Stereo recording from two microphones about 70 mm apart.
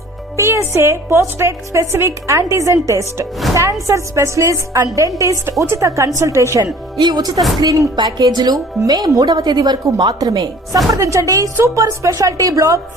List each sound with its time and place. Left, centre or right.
0.3 s a woman's voice: right
7.0 s a woman's voice: right
9.8 s a woman's voice: right
10.9 s a woman's voice: right
11.5 s a woman's voice: right